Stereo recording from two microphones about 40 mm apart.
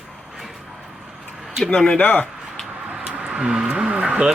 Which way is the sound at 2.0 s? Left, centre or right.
Left.